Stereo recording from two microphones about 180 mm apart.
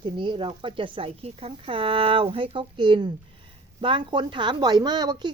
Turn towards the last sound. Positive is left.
turn(degrees=-25)  # may be behind; listen again after turning